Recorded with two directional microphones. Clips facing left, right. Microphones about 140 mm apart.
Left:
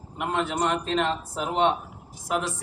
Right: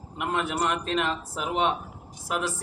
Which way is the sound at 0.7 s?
30° left (ahead or behind).